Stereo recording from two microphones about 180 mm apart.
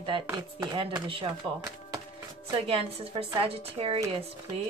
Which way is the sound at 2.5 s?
30° right (ahead or behind).